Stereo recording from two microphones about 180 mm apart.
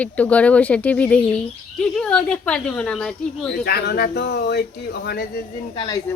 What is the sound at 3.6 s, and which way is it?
Speech, 60° left (ahead or behind).